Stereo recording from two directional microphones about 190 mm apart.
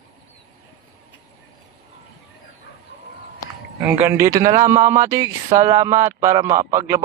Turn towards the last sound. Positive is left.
turn(degrees=-15)  # may be behind; listen again after turning